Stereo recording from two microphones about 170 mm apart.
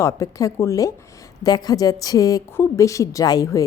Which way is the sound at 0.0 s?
20° left (ahead or behind).